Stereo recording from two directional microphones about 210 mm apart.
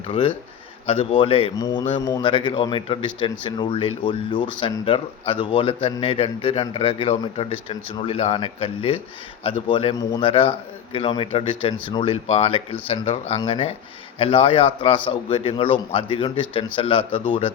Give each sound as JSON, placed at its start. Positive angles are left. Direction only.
{"t": 0.1, "sound": "speech", "side_deg": 25}